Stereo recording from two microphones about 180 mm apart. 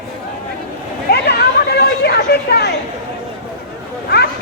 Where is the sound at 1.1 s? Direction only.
65° left (ahead or behind).